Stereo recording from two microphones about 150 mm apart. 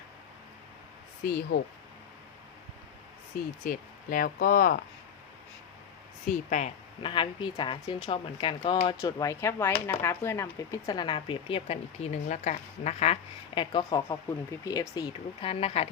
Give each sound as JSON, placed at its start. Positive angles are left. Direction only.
{"t": 1.2, "sound": "speech", "side_deg": 90}
{"t": 3.3, "sound": "speech", "side_deg": 70}
{"t": 6.5, "sound": "speech", "side_deg": 50}
{"t": 7.0, "sound": "speech", "side_deg": 35}
{"t": 13.6, "sound": "speech", "side_deg": 35}
{"t": 15.4, "sound": "speech", "side_deg": 40}